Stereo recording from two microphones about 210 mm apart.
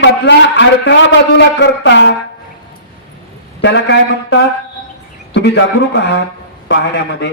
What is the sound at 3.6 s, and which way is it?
A man's voice, 60° left (ahead or behind).